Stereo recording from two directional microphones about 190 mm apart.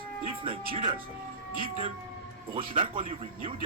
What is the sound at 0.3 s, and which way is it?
Music, 30° right (ahead or behind).